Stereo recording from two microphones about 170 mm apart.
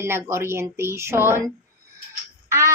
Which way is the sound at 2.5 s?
15° right (ahead or behind).